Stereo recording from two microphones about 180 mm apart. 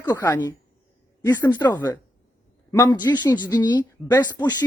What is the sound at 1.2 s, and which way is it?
Speech, 15° left (ahead or behind).